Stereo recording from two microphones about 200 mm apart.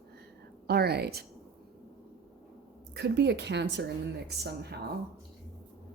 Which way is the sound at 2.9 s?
55° right (ahead or behind).